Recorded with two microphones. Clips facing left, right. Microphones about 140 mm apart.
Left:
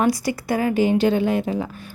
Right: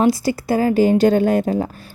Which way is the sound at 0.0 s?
30° right (ahead or behind).